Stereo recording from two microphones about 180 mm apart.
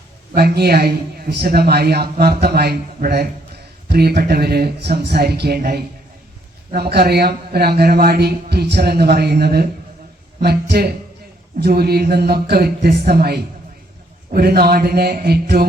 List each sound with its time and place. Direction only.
0.3 s speech: 60° right (ahead or behind)